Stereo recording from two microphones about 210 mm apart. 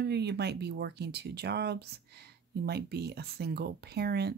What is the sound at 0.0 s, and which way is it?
Speech, 50° right (ahead or behind).